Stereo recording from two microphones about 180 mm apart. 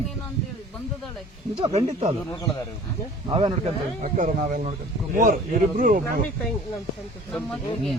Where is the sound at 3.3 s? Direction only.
25° right (ahead or behind).